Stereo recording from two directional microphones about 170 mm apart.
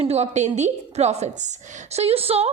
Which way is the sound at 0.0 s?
40° right (ahead or behind).